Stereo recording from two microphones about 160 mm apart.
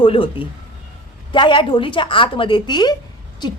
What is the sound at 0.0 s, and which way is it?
Speech, 35° left (ahead or behind).